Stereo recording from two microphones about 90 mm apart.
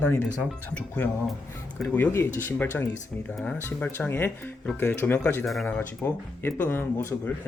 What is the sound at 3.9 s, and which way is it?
Speech, 20° left (ahead or behind).